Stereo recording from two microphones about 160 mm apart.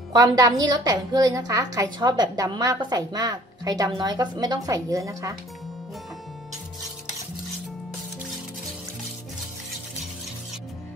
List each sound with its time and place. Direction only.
0.1 s a woman's voice: 25° right (ahead or behind)